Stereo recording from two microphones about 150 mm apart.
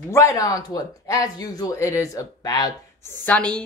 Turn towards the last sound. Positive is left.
turn(degrees=10)  # may be behind; listen again after turning